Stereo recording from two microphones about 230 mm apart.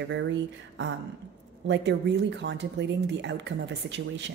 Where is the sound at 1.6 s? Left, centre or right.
Right.